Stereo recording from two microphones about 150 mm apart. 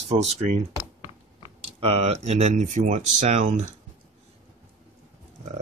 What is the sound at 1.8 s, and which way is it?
Speech, 45° right (ahead or behind).